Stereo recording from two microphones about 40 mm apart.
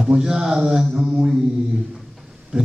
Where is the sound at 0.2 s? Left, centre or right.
Centre.